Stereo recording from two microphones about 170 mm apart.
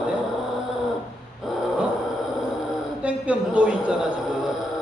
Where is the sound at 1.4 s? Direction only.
Centre (ahead or behind).